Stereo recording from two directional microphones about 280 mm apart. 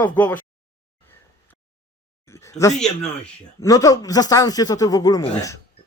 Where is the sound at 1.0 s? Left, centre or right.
Centre.